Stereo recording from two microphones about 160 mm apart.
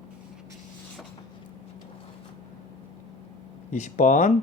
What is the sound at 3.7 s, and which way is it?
Speech, 50° left (ahead or behind).